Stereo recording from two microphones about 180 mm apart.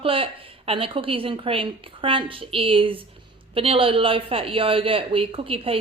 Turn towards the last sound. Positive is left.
turn(degrees=-30)  # may be behind; listen again after turning